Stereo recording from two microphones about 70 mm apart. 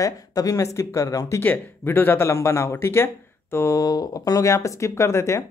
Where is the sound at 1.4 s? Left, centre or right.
Left.